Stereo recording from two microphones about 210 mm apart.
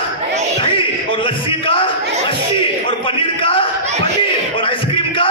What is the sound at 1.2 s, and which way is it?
Music, 25° left (ahead or behind).